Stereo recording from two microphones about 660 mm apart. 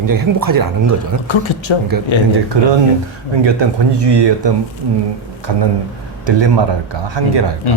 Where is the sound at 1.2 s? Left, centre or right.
Left.